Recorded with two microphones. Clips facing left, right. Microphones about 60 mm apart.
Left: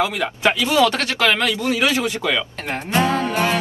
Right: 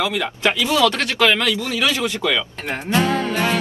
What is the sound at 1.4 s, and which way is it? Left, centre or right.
Speech, centre.